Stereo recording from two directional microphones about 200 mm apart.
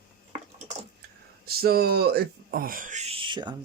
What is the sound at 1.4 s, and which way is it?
Speech, 50° right (ahead or behind).